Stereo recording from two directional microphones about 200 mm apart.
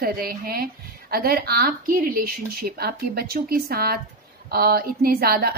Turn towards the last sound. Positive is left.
turn(degrees=-50)  # may be behind; listen again after turning